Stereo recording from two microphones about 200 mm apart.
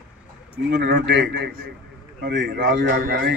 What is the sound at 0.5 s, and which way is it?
A man's voice, 60° right (ahead or behind).